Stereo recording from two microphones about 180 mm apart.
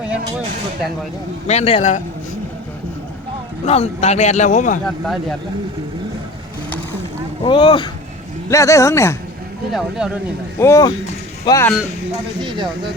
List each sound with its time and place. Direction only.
1.5 s a man's voice: 35° left (ahead or behind)
3.7 s a man's voice: 35° left (ahead or behind)
4.9 s speech: centre (ahead or behind)
7.4 s speech: 25° left (ahead or behind)
8.4 s speech: 15° left (ahead or behind)
10.0 s speech: 5° right (ahead or behind)
10.6 s speech: 15° left (ahead or behind)
12.4 s speech: 25° right (ahead or behind)